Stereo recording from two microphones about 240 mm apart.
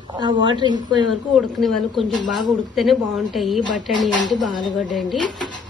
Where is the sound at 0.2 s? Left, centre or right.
Centre.